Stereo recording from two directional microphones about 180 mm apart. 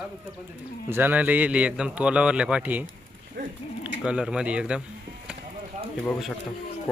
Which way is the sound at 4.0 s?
5° right (ahead or behind).